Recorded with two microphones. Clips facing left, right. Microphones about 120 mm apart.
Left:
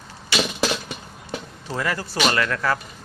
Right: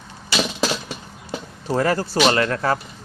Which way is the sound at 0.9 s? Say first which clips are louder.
Right 2 dB; 30° right (ahead or behind).